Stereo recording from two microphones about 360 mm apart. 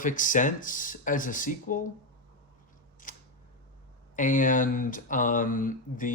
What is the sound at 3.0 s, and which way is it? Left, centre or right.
Scissors, left.